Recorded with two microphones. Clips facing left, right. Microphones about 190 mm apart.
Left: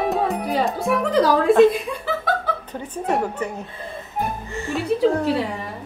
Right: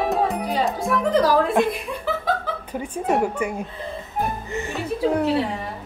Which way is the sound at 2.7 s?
5° right (ahead or behind).